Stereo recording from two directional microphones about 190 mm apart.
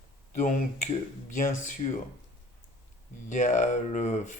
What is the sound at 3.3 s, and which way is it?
Speech, 40° left (ahead or behind).